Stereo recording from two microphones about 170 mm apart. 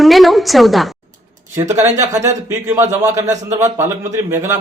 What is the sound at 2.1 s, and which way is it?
Speech, 45° right (ahead or behind).